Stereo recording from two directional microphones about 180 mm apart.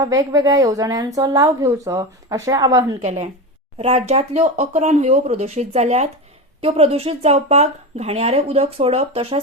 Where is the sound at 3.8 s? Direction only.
35° right (ahead or behind).